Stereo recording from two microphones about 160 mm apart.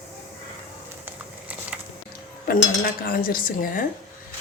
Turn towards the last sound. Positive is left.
turn(degrees=60)  # may be behind; listen again after turning